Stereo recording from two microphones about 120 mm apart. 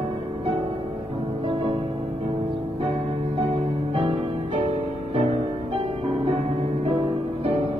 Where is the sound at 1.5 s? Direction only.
45° right (ahead or behind).